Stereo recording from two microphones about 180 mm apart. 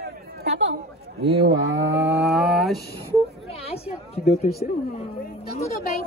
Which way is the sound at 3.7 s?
35° left (ahead or behind).